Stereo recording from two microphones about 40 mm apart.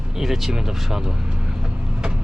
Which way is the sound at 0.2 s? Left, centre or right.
Centre.